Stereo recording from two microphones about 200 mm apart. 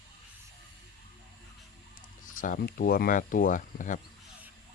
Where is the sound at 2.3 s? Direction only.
40° left (ahead or behind).